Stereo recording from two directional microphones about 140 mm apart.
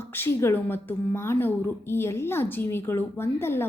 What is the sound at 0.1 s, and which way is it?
A woman's voice, 15° left (ahead or behind).